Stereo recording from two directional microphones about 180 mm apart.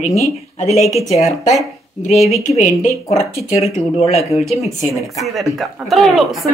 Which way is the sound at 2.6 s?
40° left (ahead or behind).